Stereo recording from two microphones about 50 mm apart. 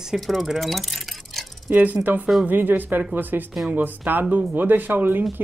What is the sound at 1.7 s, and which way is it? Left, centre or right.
Speech, right.